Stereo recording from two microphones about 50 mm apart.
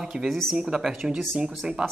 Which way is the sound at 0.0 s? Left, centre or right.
Centre.